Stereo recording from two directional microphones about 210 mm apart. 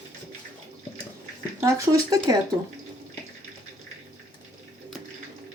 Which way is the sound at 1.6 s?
15° right (ahead or behind).